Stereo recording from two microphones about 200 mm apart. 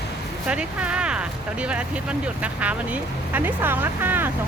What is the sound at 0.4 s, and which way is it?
Speech, 5° right (ahead or behind).